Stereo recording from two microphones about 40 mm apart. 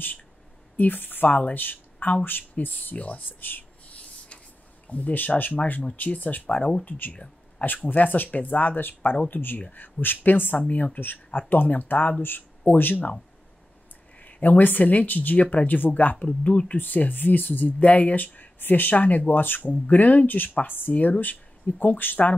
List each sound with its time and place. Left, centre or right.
0.7 s speech: left
3.8 s a sound: left
4.8 s speech: left
10.7 s speech: left
11.3 s speech: left
14.2 s speech: left
16.3 s speech: left
16.7 s speech: left
19.6 s speech: left